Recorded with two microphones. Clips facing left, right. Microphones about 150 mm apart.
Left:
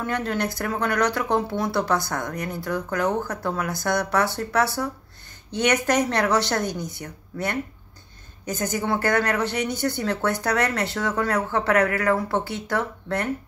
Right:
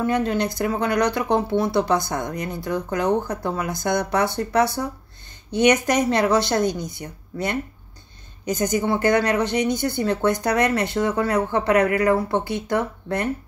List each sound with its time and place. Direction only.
0.0 s speech: 15° right (ahead or behind)
6.6 s speech: 10° left (ahead or behind)
8.5 s speech: 15° right (ahead or behind)